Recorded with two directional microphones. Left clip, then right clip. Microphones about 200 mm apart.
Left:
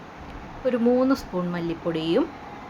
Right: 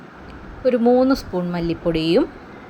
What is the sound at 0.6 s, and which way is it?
A woman's voice, 20° right (ahead or behind).